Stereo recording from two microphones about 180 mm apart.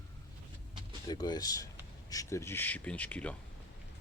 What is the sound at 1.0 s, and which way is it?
Speech, 25° left (ahead or behind).